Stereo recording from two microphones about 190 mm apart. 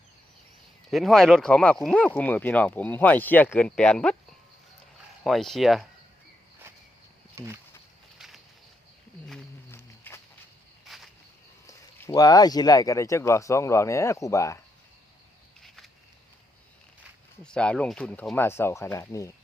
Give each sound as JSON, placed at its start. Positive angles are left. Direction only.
{"t": 0.9, "sound": "speech", "side_deg": 0}
{"t": 5.2, "sound": "speech", "side_deg": 0}
{"t": 7.3, "sound": "speech", "side_deg": -15}
{"t": 8.2, "sound": "a sound", "side_deg": 0}
{"t": 9.7, "sound": "a sound", "side_deg": 15}
{"t": 10.8, "sound": "insect", "side_deg": 0}
{"t": 11.6, "sound": "speech", "side_deg": 15}
{"t": 15.6, "sound": "a sound", "side_deg": 0}
{"t": 17.4, "sound": "speech", "side_deg": 5}